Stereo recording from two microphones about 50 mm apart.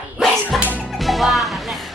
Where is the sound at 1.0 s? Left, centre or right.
Centre.